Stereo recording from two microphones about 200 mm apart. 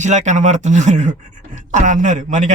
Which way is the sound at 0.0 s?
35° right (ahead or behind).